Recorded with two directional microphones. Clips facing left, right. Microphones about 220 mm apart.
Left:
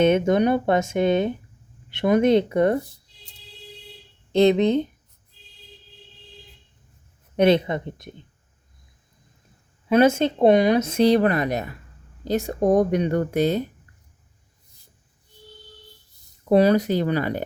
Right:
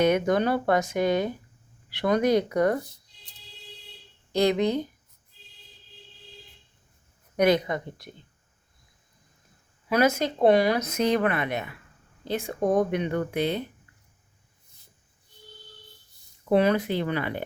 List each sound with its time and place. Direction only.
0.0 s speech: 25° left (ahead or behind)
4.3 s speech: 25° left (ahead or behind)
7.3 s speech: 25° left (ahead or behind)
9.9 s a woman's voice: 25° left (ahead or behind); by 13.6 s 40° left (ahead or behind)
16.5 s a woman's voice: 35° left (ahead or behind)